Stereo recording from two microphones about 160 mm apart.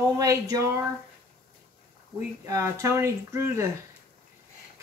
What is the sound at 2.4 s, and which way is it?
Speech, 20° right (ahead or behind).